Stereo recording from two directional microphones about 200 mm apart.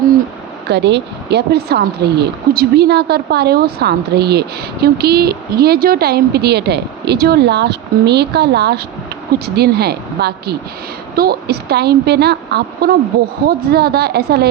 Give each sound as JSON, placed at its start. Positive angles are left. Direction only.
{"t": 0.7, "sound": "speech", "side_deg": -60}